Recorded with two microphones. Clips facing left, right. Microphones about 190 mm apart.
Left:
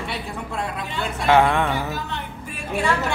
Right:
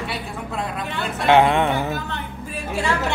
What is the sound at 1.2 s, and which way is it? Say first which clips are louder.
Speech: right 2 dB; 20° right (ahead or behind).